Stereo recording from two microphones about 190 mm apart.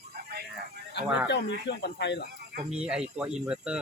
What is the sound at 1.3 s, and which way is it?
Speech, 65° left (ahead or behind).